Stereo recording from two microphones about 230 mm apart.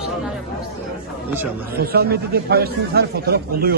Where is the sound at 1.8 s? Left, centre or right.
Right.